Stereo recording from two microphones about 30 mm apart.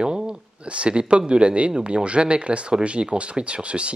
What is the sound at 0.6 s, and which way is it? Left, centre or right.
Speech, right.